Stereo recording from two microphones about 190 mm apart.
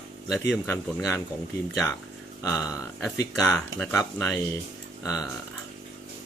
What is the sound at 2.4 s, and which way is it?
Speech, 15° left (ahead or behind).